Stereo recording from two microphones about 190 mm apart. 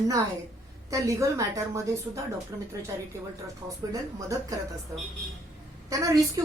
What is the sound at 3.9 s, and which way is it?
Speech, 15° right (ahead or behind).